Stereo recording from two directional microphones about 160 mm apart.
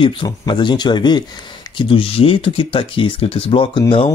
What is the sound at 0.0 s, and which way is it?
Speech, 30° left (ahead or behind).